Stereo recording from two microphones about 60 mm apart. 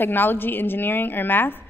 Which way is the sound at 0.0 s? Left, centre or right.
Left.